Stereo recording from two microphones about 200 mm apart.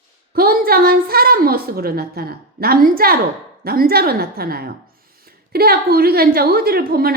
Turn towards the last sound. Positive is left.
turn(degrees=-50)  # may be behind; listen again after turning